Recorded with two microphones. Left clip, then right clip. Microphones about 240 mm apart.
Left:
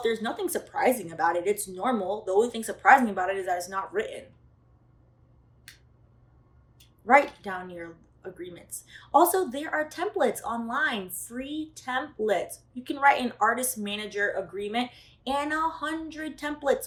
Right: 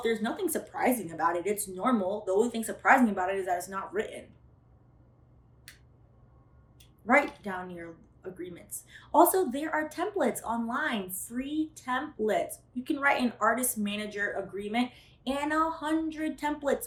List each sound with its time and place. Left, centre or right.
0.0 s a woman's voice: centre
6.7 s a woman's voice: centre